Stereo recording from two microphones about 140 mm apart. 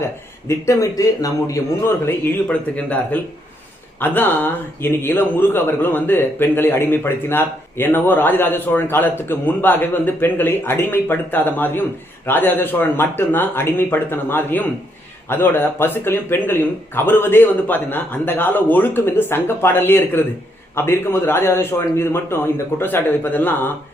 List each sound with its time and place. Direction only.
0.4 s a man's voice: 20° left (ahead or behind)